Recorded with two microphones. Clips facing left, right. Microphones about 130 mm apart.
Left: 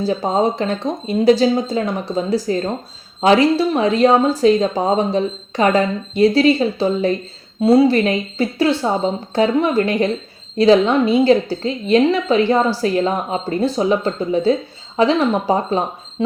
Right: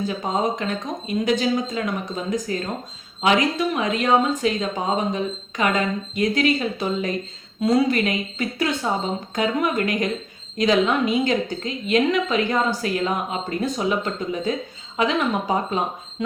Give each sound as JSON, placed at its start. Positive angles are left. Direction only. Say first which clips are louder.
{"t": 0.0, "sound": "a woman's voice", "louder": "left 6 dB", "side_deg": 35}